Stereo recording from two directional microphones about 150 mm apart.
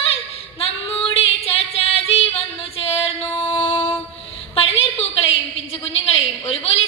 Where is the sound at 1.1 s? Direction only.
40° left (ahead or behind).